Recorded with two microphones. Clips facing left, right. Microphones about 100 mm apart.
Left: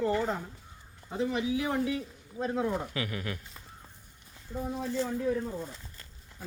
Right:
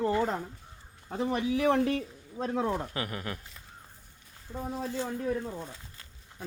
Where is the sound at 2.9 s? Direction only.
35° right (ahead or behind).